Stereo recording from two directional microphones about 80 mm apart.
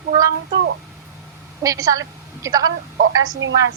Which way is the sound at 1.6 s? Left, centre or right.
Right.